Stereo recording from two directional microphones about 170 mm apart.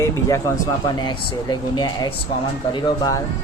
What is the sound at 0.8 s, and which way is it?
Speech, 30° left (ahead or behind).